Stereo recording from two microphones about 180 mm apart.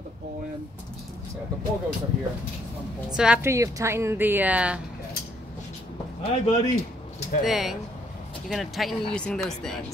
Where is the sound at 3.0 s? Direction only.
5° right (ahead or behind).